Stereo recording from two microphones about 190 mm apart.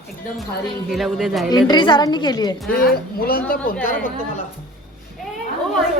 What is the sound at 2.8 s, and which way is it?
Speech, 50° left (ahead or behind).